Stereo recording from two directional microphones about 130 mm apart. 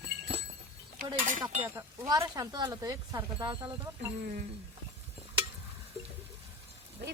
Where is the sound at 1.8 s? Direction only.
25° right (ahead or behind).